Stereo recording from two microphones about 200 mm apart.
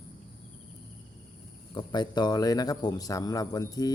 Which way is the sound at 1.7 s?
20° left (ahead or behind).